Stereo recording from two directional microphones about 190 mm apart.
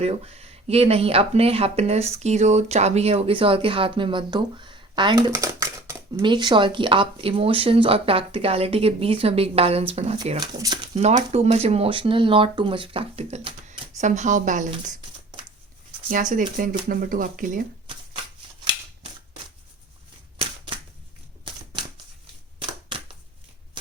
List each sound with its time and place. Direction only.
0.0 s speech: 30° right (ahead or behind)
10.4 s speech: 20° right (ahead or behind)
10.9 s speech: 35° right (ahead or behind)
16.0 s speech: 45° right (ahead or behind)